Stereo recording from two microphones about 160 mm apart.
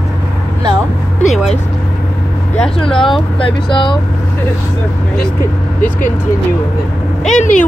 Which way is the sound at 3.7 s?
30° left (ahead or behind).